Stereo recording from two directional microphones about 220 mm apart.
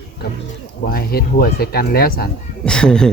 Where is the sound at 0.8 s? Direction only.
45° left (ahead or behind).